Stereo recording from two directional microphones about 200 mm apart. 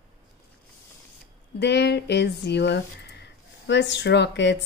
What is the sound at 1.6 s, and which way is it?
Speech, 55° left (ahead or behind).